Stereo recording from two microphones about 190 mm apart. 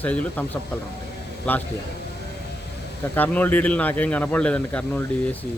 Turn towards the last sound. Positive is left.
turn(degrees=10)  # may be behind; listen again after turning